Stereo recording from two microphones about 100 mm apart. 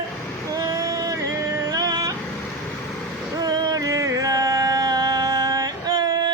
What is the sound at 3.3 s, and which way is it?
Music, 40° right (ahead or behind).